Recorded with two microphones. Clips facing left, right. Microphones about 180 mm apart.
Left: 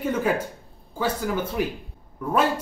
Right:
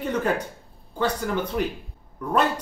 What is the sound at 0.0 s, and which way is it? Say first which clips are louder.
A man's voice: left 1 dB; 5° left (ahead or behind).